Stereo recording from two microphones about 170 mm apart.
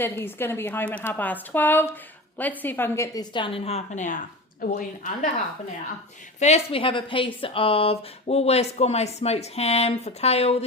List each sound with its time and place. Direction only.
0.0 s a woman's voice: 15° left (ahead or behind); by 5.3 s 55° left (ahead or behind)
6.4 s speech: 35° left (ahead or behind)